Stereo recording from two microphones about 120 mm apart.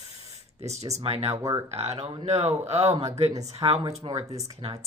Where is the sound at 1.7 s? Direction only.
65° right (ahead or behind).